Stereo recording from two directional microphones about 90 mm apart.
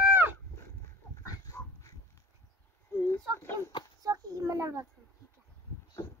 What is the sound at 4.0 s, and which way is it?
Speech, 40° right (ahead or behind).